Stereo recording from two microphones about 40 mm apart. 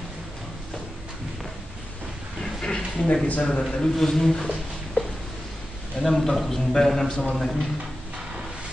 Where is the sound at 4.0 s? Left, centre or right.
Centre.